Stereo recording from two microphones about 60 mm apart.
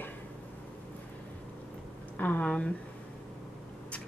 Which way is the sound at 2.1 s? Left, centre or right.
Left.